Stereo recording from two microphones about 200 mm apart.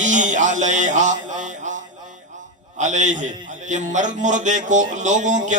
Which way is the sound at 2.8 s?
35° right (ahead or behind).